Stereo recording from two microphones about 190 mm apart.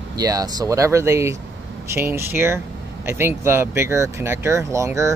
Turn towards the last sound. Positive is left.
turn(degrees=-15)  # may be behind; listen again after turning